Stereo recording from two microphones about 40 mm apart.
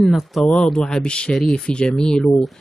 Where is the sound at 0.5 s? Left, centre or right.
Left.